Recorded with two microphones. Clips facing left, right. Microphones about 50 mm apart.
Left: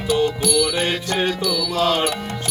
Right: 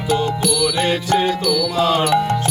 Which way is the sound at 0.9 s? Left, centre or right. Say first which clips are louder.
Right 4 dB; centre.